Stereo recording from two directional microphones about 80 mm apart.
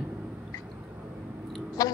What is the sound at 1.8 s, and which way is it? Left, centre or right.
Speech, left.